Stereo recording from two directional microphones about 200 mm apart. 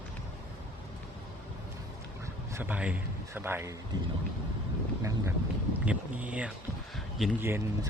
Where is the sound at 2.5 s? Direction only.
10° right (ahead or behind).